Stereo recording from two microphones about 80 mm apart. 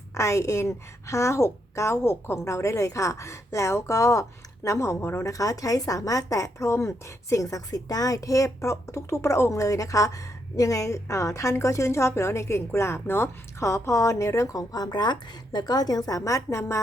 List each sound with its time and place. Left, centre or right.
0.1 s a woman's voice: left